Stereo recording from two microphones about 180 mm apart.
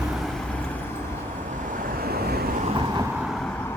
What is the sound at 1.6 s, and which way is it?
Waves, 50° right (ahead or behind).